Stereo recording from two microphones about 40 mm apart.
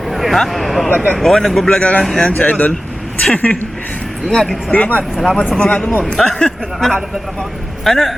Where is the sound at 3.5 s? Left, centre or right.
Left.